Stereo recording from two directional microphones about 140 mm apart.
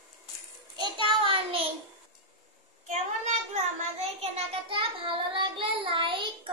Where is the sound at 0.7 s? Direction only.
35° right (ahead or behind).